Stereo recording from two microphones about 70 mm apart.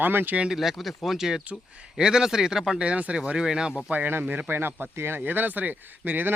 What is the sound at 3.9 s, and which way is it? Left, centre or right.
Speech, right.